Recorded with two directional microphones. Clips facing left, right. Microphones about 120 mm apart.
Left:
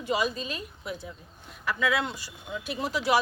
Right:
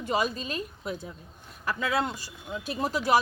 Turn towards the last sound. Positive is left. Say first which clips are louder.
# right 1 dB
turn(degrees=-45)  # may be behind; listen again after turning